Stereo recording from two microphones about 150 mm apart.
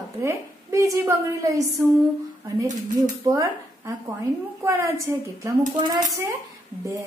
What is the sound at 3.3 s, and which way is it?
A woman's voice, 20° right (ahead or behind).